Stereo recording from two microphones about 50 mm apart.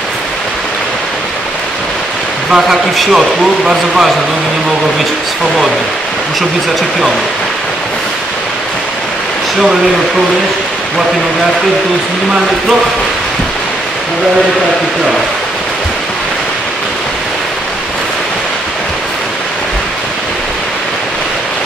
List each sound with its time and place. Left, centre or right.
2.5 s speech: centre